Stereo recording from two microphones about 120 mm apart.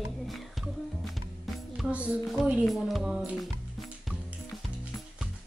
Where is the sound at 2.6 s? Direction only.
Centre (ahead or behind).